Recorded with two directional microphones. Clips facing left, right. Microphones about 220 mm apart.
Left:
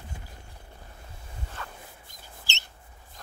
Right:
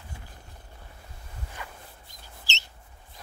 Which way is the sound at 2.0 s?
50° left (ahead or behind).